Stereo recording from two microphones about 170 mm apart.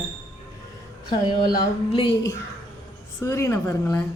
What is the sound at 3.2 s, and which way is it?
Speech, 15° left (ahead or behind).